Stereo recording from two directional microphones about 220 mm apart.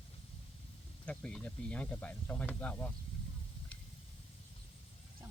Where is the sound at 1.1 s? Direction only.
5° left (ahead or behind).